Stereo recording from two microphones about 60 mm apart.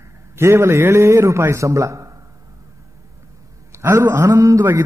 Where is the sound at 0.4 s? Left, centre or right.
Right.